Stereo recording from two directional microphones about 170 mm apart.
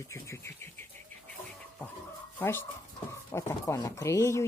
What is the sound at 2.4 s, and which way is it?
Speech, 15° left (ahead or behind).